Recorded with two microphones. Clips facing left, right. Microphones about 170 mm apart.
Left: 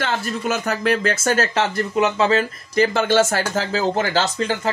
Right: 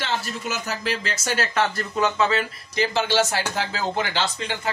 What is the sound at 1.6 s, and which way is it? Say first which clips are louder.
Speech: left 3 dB; 20° left (ahead or behind).